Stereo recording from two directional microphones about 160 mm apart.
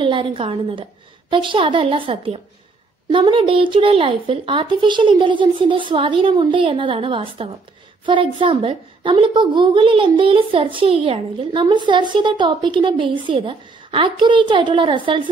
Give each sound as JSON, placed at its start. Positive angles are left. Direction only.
{"t": 0.0, "sound": "a woman's voice", "side_deg": -30}